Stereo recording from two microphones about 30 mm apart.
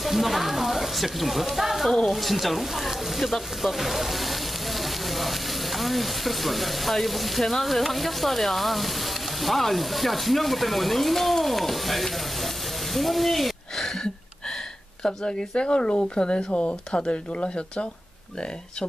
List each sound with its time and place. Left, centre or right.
0.0 s speech: centre
9.4 s stir: centre
12.9 s a sound: centre
15.0 s speech: left
16.5 s speech: left